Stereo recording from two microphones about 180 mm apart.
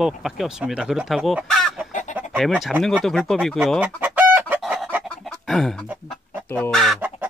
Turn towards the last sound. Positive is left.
turn(degrees=5)  # may be behind; listen again after turning